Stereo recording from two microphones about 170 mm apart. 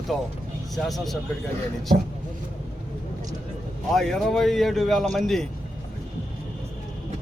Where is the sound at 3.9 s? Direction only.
Centre (ahead or behind).